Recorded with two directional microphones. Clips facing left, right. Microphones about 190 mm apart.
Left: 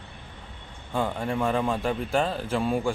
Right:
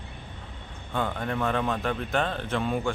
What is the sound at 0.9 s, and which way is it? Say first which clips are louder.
A man's voice: left 2 dB; 10° left (ahead or behind).